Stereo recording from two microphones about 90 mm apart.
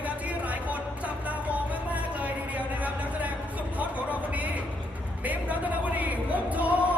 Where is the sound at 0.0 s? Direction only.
15° right (ahead or behind).